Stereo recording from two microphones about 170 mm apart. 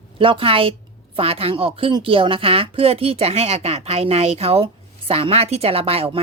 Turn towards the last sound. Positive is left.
turn(degrees=-35)  # may be behind; listen again after turning